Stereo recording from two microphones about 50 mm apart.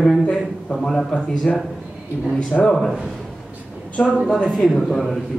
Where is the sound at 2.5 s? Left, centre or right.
Centre.